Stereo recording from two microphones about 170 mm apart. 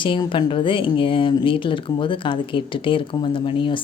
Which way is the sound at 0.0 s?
30° left (ahead or behind).